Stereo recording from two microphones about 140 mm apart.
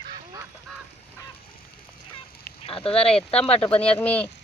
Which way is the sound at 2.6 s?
40° left (ahead or behind).